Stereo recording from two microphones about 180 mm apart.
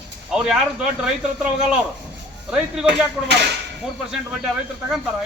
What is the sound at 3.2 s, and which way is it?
Speech, 70° right (ahead or behind).